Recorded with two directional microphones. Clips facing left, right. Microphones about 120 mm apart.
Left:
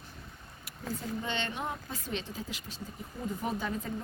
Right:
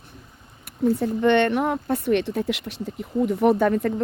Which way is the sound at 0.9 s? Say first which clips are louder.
Right 16 dB; 65° right (ahead or behind).